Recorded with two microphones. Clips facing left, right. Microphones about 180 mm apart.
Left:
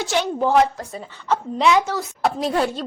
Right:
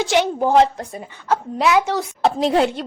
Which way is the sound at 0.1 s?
15° right (ahead or behind).